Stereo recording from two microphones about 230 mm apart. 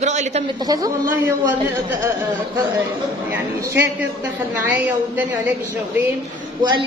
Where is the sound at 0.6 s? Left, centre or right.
Centre.